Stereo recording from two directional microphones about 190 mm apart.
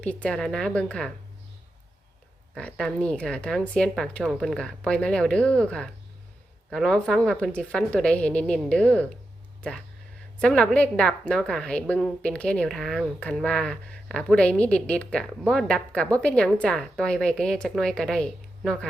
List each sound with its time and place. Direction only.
0.0 s a woman's voice: 5° left (ahead or behind)
2.6 s a woman's voice: 5° left (ahead or behind)
10.4 s a woman's voice: 5° left (ahead or behind)